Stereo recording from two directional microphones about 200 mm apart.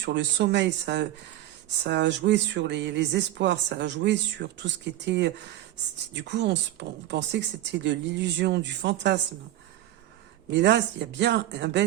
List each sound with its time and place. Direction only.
0.0 s speech: 60° right (ahead or behind)
10.5 s speech: 60° right (ahead or behind)